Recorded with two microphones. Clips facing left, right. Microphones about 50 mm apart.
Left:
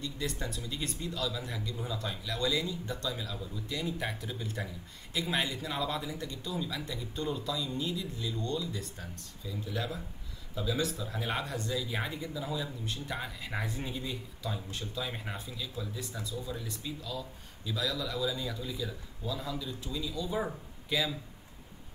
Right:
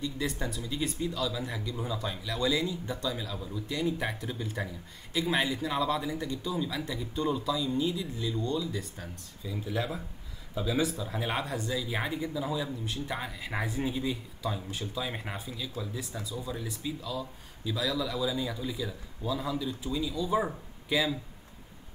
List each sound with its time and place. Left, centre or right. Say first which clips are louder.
0.0 s speech: right 4 dB; centre
9.5 s speech: right 3 dB; centre